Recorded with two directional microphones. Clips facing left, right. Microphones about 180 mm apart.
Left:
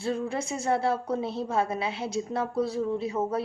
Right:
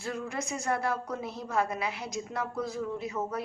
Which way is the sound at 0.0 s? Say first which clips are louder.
Left 5 dB; 30° left (ahead or behind).